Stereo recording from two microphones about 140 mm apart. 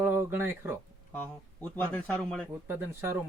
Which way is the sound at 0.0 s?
15° right (ahead or behind).